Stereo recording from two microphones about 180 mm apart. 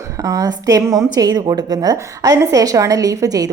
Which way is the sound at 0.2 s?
20° right (ahead or behind).